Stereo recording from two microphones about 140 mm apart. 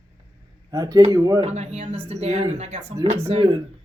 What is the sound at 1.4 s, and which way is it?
A woman's voice, 50° right (ahead or behind).